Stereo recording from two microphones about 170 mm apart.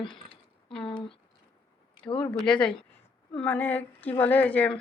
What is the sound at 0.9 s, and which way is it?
Speech, 30° left (ahead or behind).